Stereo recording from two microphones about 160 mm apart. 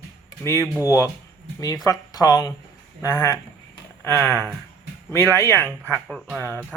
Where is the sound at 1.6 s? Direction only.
20° left (ahead or behind).